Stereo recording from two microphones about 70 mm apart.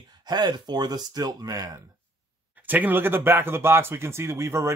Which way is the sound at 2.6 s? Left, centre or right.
Right.